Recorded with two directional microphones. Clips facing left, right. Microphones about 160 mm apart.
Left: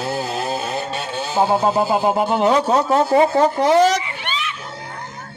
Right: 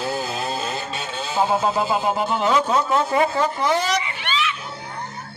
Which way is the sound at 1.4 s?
35° left (ahead or behind).